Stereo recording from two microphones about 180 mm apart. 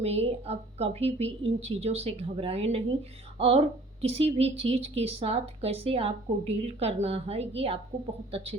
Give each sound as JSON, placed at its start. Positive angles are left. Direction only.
{"t": 0.0, "sound": "a woman's voice", "side_deg": -35}